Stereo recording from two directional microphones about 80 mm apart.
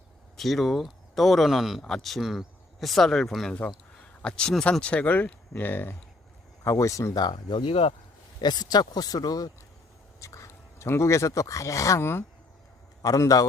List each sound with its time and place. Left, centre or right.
0.3 s speech: centre; by 6.0 s left
6.7 s speech: left
7.1 s speech: left
8.4 s speech: left
10.2 s speech: left
13.0 s a man's voice: left